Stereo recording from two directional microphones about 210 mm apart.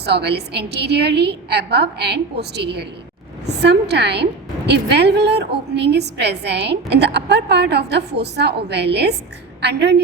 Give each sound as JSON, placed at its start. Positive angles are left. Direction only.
{"t": 0.0, "sound": "a woman's voice", "side_deg": -50}